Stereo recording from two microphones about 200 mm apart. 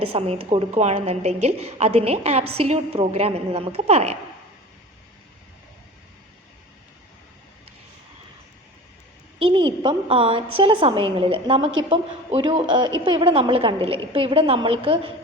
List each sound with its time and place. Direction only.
0.0 s a woman's voice: 30° right (ahead or behind)
9.4 s a woman's voice: 25° right (ahead or behind)